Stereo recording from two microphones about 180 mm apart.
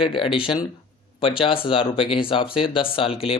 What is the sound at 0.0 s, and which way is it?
Speech, 25° left (ahead or behind).